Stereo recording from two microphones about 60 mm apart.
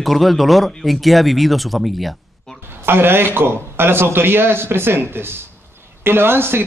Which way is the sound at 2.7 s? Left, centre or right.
Right.